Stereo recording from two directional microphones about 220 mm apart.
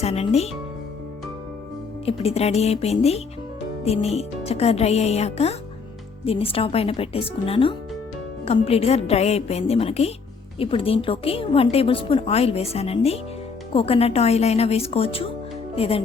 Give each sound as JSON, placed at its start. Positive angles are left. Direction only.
{"t": 0.0, "sound": "music", "side_deg": 30}
{"t": 2.0, "sound": "a woman's voice", "side_deg": 25}